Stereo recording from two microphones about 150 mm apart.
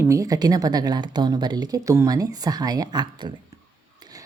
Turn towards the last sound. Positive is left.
turn(degrees=-30)  # may be behind; listen again after turning